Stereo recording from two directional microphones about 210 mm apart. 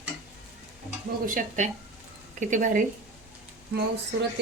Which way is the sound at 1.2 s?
40° right (ahead or behind).